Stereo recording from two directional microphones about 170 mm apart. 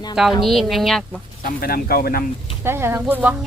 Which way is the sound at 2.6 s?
15° right (ahead or behind).